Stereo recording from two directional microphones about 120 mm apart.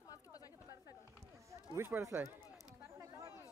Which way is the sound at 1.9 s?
25° right (ahead or behind).